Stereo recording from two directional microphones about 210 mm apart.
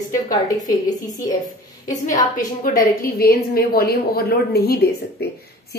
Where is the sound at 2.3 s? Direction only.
40° left (ahead or behind).